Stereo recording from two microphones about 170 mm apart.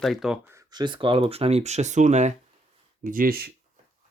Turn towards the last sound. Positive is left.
turn(degrees=-65)  # may be behind; listen again after turning